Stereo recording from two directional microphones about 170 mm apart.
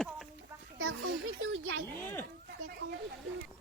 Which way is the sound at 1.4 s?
90° right.